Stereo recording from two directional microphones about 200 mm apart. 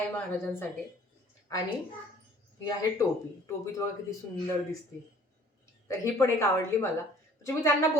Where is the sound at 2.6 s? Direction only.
20° left (ahead or behind).